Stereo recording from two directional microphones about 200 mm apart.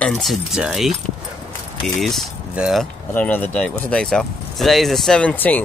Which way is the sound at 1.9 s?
Centre (ahead or behind).